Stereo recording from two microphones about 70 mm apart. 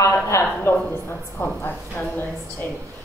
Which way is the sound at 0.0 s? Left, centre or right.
Left.